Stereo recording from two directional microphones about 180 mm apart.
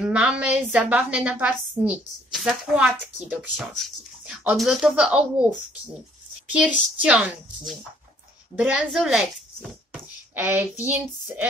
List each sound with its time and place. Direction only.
0.0 s a woman's voice: 5° right (ahead or behind)
6.5 s a woman's voice: 5° right (ahead or behind)
10.3 s speech: 10° right (ahead or behind)